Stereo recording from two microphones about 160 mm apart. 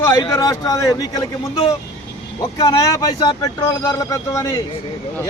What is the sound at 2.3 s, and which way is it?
A man's voice, 25° left (ahead or behind).